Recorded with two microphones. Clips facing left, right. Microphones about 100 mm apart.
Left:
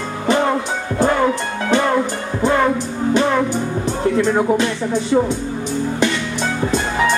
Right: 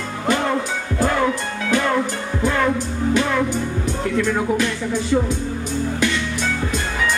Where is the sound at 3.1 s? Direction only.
30° left (ahead or behind).